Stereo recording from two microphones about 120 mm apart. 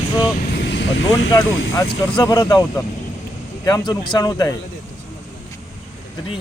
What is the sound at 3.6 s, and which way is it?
Speech, 30° left (ahead or behind).